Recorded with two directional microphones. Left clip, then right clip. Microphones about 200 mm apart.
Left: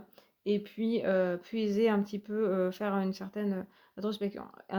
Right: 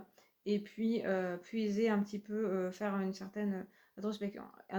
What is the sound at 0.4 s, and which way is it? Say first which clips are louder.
Speech: left 4 dB; 50° left (ahead or behind).